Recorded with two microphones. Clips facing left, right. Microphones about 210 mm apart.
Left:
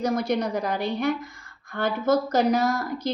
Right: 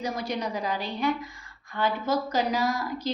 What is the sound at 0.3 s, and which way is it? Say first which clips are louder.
A woman's voice: left 4 dB; 45° left (ahead or behind).